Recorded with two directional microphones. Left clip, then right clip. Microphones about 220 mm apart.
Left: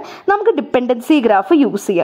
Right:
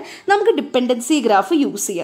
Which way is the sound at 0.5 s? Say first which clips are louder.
Left 2 dB; 25° left (ahead or behind).